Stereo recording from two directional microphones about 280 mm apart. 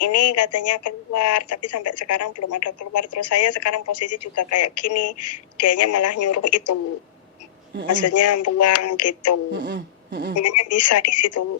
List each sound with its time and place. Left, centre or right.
0.0 s a woman's voice: left
5.5 s a woman's voice: left
7.9 s a woman's voice: left
9.5 s speech: right
10.3 s a woman's voice: left